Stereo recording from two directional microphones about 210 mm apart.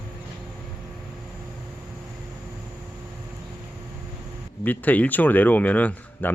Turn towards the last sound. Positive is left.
turn(degrees=5)  # may be behind; listen again after turning